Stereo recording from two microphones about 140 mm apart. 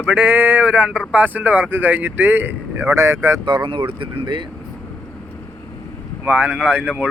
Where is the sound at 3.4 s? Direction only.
35° right (ahead or behind).